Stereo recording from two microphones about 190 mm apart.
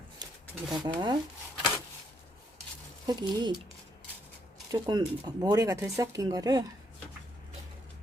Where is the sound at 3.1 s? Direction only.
20° right (ahead or behind).